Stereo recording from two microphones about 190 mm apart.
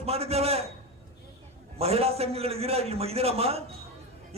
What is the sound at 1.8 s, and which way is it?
A man's voice, 30° right (ahead or behind).